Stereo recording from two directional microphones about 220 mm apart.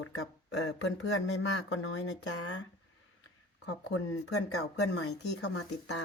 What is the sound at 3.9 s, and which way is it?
Speech, 80° left.